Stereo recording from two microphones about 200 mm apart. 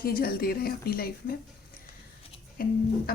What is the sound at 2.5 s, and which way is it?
Speech, 45° left (ahead or behind).